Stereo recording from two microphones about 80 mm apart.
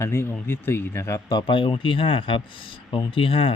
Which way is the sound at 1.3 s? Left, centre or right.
Left.